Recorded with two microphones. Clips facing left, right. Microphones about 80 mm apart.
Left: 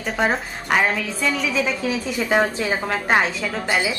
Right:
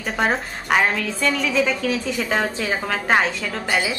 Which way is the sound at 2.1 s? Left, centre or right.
Centre.